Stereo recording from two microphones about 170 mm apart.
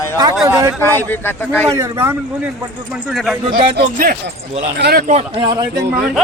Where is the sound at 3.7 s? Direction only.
60° right (ahead or behind).